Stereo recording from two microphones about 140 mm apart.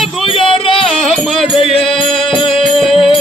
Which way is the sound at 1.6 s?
40° left (ahead or behind).